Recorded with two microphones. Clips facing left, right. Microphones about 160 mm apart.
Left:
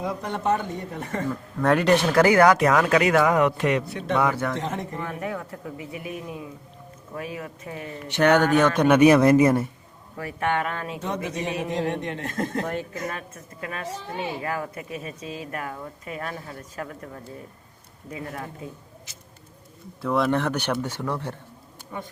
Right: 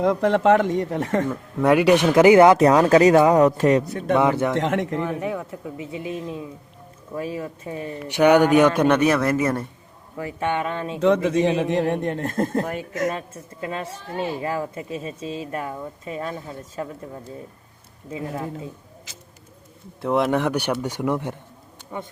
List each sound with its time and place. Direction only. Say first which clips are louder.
0.0 s speech: right 9 dB; 90° right
1.3 s speech: right 1 dB; 10° right (ahead or behind)
2.6 s speech: right 5 dB; 30° right (ahead or behind)
4.2 s speech: right 4 dB; 25° right (ahead or behind)
4.5 s speech: right 7 dB; 90° right
5.2 s speech: right 3 dB; 20° right (ahead or behind)
8.0 s speech: right 4 dB; 10° right (ahead or behind)
8.9 s speech: left 3 dB; 15° left (ahead or behind)
10.2 s speech: right 1 dB; 20° right (ahead or behind)
11.0 s speech: right 14 dB; 90° right
11.4 s a man's voice: right 6 dB; 55° right (ahead or behind)
13.1 s speech: right 4 dB; 25° right (ahead or behind)
20.0 s speech: right 2 dB; 20° right (ahead or behind)